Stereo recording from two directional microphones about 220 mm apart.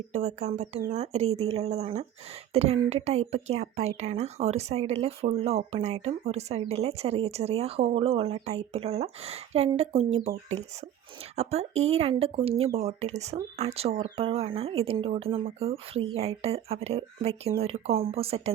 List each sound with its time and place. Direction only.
0.1 s speech: 30° right (ahead or behind)